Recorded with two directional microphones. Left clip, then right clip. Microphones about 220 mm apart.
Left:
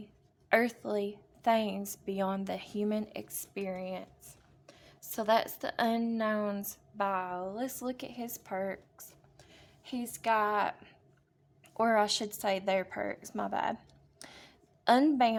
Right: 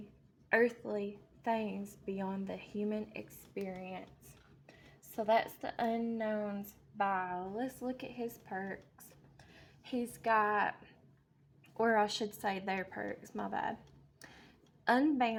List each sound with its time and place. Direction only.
0.4 s a woman's voice: 30° left (ahead or behind)
5.1 s a woman's voice: 25° left (ahead or behind)
6.9 s a woman's voice: 15° left (ahead or behind)
9.9 s speech: 10° left (ahead or behind)
11.8 s a woman's voice: 20° left (ahead or behind)
14.9 s a woman's voice: 20° left (ahead or behind)